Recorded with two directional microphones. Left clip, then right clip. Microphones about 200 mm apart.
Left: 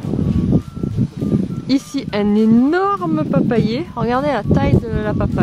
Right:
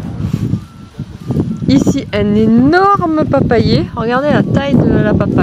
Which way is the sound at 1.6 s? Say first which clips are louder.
Right 8 dB; 5° right (ahead or behind).